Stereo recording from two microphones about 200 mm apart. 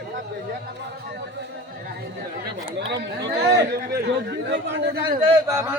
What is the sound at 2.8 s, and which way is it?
Chatter, 55° right (ahead or behind).